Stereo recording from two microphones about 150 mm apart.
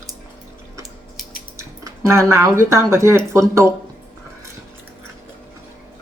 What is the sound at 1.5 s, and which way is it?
Speech, 20° right (ahead or behind).